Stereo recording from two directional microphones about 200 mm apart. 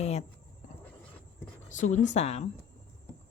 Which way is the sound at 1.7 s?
40° left (ahead or behind).